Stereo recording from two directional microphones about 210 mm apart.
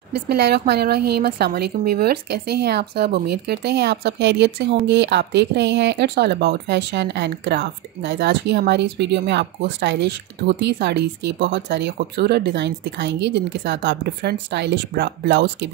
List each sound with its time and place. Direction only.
0.1 s speech: 50° right (ahead or behind)